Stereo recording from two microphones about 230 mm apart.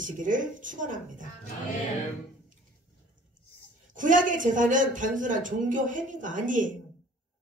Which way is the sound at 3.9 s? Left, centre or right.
Right.